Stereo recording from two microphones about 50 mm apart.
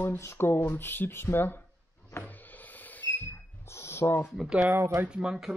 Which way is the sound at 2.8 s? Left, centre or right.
Left.